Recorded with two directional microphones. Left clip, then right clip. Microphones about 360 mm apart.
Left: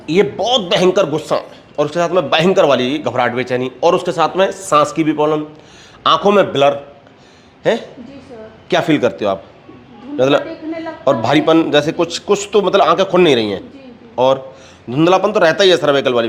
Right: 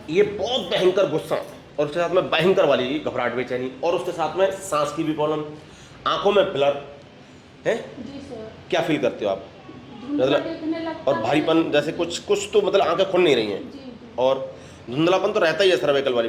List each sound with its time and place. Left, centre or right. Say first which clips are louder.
0.1 s speech: left 7 dB; left
6.0 s a man's voice: left 8 dB; left